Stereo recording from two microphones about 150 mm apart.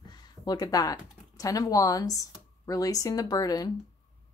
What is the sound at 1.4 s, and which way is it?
A woman's voice, 25° left (ahead or behind).